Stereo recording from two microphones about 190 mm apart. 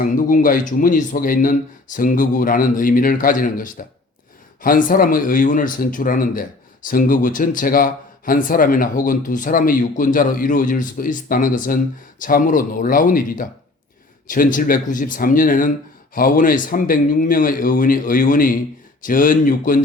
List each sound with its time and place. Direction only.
0.0 s speech: 45° left (ahead or behind)